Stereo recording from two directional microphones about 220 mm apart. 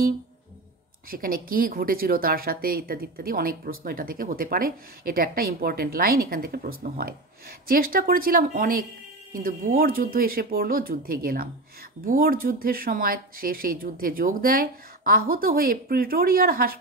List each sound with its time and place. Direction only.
1.1 s speech: 40° right (ahead or behind)